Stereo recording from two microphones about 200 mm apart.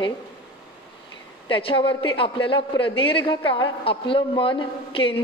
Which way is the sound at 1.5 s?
25° left (ahead or behind).